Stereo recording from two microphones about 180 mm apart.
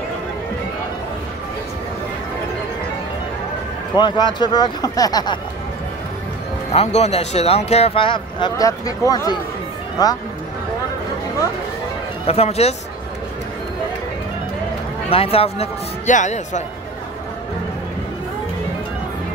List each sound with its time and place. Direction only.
3.9 s speech: 25° left (ahead or behind)
6.7 s speech: 35° left (ahead or behind); by 9.4 s 20° left (ahead or behind)
12.3 s speech: 35° left (ahead or behind)
15.0 s speech: 35° left (ahead or behind)